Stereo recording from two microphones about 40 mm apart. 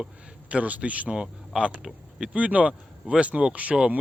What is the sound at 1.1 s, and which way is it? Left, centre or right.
Speech, right.